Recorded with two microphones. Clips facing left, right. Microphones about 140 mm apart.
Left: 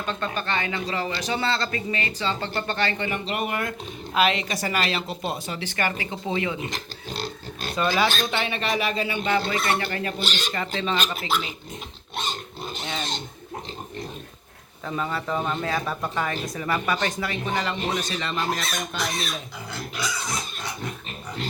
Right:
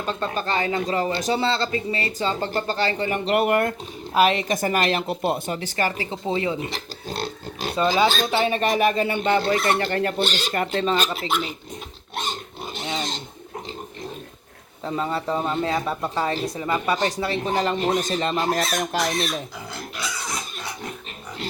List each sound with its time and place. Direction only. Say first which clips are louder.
0.0 s speech: right 3 dB; 35° right (ahead or behind)
1.4 s speech: right 3 dB; 30° right (ahead or behind)
3.2 s speech: right 8 dB; 65° right (ahead or behind)
4.1 s speech: right 4 dB; 40° right (ahead or behind)
5.7 s speech: right 1 dB; 35° right (ahead or behind)
7.8 s speech: right 3 dB; 30° right (ahead or behind); by 9.2 s 50° right (ahead or behind)
9.2 s speech: right 3 dB; 40° right (ahead or behind)
9.9 s speech: right 6 dB; 60° right (ahead or behind); by 11.1 s 40° right (ahead or behind)
14.8 s speech: right 3 dB; 25° right (ahead or behind)
18.8 s speech: right 6 dB; 70° right (ahead or behind)